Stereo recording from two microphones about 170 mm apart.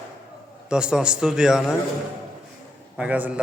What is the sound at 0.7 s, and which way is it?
A man's voice, 5° right (ahead or behind).